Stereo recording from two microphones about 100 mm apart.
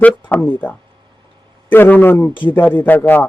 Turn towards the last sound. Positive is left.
turn(degrees=20)  # may be behind; listen again after turning